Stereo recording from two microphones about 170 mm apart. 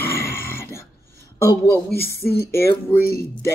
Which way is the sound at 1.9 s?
65° left (ahead or behind).